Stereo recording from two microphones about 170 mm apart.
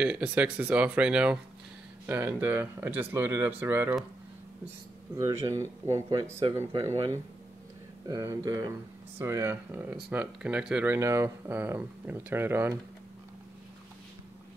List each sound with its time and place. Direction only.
0.0 s speech: 10° right (ahead or behind)
5.1 s speech: 20° right (ahead or behind)
8.1 s speech: 20° right (ahead or behind)